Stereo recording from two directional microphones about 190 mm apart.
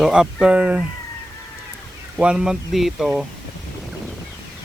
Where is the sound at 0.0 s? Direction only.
5° right (ahead or behind).